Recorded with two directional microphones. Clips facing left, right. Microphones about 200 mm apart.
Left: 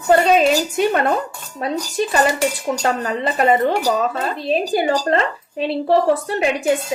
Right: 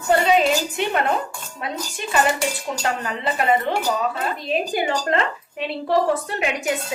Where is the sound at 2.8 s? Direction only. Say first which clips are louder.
Left 3 dB; 40° left (ahead or behind).